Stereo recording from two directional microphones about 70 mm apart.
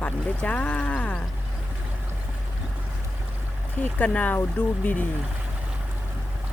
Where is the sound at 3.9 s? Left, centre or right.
Left.